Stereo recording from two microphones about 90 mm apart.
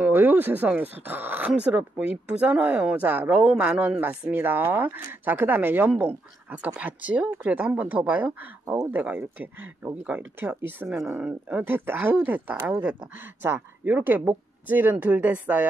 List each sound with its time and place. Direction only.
0.0 s speech: 20° right (ahead or behind)
6.5 s speech: 15° right (ahead or behind)